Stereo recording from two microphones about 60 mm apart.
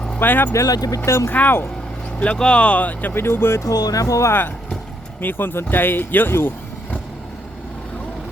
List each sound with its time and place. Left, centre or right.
0.2 s speech: left
0.5 s speech: left
1.3 s speech: left
2.1 s speech: centre
3.2 s speech: left
3.6 s speech: left
4.3 s speech: left